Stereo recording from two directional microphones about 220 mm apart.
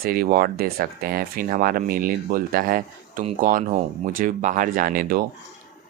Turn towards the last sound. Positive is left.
turn(degrees=-40)  # may be behind; listen again after turning